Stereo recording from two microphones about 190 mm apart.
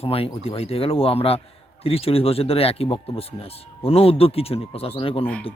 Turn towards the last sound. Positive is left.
turn(degrees=10)  # may be behind; listen again after turning